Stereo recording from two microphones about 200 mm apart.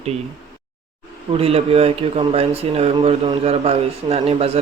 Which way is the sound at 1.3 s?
30° right (ahead or behind).